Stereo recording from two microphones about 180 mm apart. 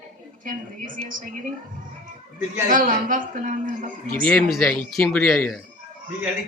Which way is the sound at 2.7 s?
50° right (ahead or behind).